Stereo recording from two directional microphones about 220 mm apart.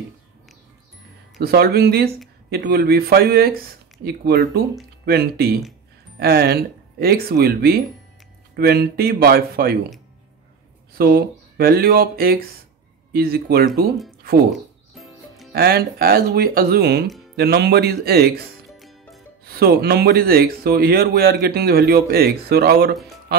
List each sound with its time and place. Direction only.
1.4 s speech: 45° right (ahead or behind)
11.0 s speech: 45° right (ahead or behind)
14.4 s music: centre (ahead or behind)
15.5 s speech: 45° right (ahead or behind)
18.7 s music: centre (ahead or behind)
19.4 s speech: 45° right (ahead or behind)